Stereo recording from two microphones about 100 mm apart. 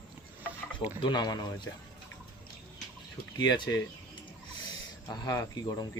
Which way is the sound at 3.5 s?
40° left (ahead or behind).